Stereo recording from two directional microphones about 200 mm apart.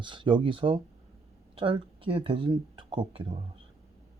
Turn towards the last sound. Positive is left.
turn(degrees=-25)  # may be behind; listen again after turning